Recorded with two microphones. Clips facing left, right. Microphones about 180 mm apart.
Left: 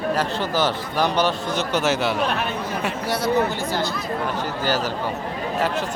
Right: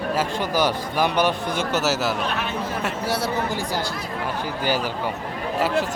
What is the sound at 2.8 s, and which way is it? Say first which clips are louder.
Speech: even; 5° right (ahead or behind).